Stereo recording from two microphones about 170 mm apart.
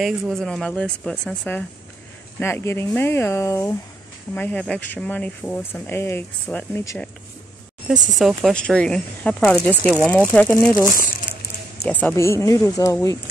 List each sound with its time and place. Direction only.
0.0 s speech: centre (ahead or behind)
2.4 s speech: 15° left (ahead or behind)
7.9 s speech: centre (ahead or behind)
11.8 s speech: 10° left (ahead or behind)